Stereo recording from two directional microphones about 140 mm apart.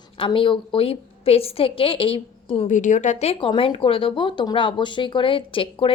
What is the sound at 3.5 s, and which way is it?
Speech, 40° left (ahead or behind).